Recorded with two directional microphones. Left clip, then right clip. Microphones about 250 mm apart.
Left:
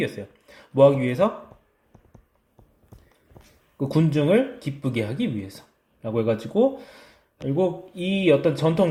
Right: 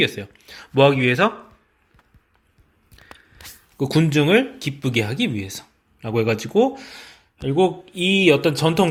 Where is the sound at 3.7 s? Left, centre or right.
Right.